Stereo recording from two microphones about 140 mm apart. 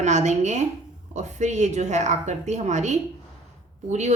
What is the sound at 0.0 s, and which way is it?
A woman's voice, 55° right (ahead or behind).